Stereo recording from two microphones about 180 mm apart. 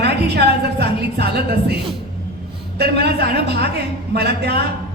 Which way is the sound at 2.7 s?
65° right (ahead or behind).